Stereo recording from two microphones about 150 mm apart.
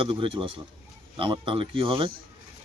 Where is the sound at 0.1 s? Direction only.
35° right (ahead or behind).